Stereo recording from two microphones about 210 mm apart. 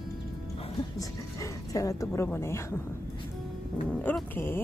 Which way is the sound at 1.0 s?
15° left (ahead or behind).